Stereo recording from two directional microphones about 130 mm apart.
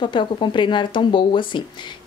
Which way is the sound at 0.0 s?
35° left (ahead or behind).